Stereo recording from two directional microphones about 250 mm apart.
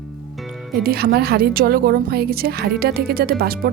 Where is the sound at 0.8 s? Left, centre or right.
Right.